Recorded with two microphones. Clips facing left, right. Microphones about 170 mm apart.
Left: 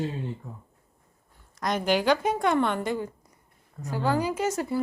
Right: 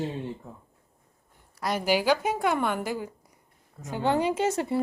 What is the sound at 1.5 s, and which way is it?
A woman's voice, 5° right (ahead or behind).